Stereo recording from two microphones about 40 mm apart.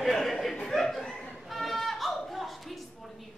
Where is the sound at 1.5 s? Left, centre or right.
Centre.